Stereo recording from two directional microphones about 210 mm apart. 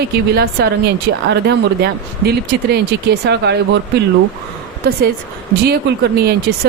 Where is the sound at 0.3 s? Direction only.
50° right (ahead or behind).